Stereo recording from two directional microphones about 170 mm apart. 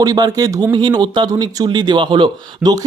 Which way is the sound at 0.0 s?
20° right (ahead or behind).